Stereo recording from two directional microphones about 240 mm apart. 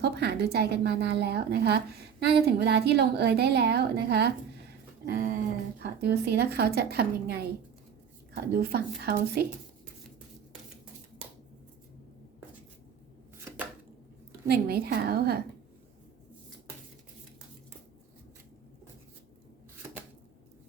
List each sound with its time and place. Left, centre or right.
0.0 s a woman's voice: right
8.5 s a woman's voice: right
14.4 s a woman's voice: right